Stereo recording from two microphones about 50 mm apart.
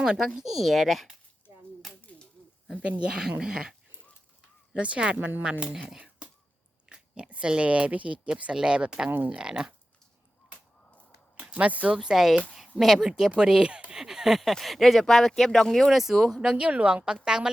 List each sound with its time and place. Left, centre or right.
0.0 s speech: centre
2.8 s speech: right
4.7 s speech: right
6.8 s speech: centre
9.0 s speech: right
9.3 s speech: centre
11.5 s speech: right
12.0 s speech: centre
16.6 s speech: right